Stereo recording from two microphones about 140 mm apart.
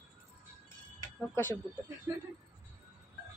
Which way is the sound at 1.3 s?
15° left (ahead or behind).